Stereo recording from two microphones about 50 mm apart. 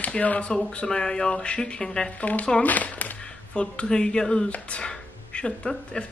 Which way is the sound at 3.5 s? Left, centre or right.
Centre.